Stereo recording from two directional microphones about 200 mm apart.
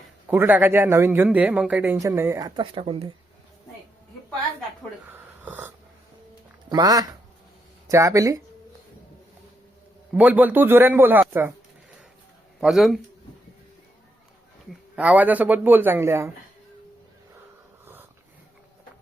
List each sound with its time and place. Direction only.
0.3 s speech: 10° right (ahead or behind); by 3.2 s 30° right (ahead or behind)
5.1 s a sound: 10° right (ahead or behind)
6.7 s speech: 20° right (ahead or behind)
10.1 s speech: 5° right (ahead or behind)
12.5 s a man's voice: centre (ahead or behind)
14.7 s speech: 5° right (ahead or behind)